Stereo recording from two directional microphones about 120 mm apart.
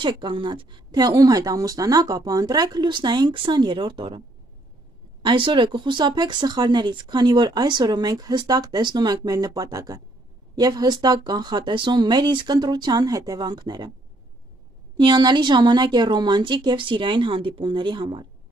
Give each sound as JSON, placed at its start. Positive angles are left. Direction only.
{"t": 0.0, "sound": "speech", "side_deg": -40}
{"t": 5.2, "sound": "speech", "side_deg": -45}
{"t": 15.0, "sound": "speech", "side_deg": -35}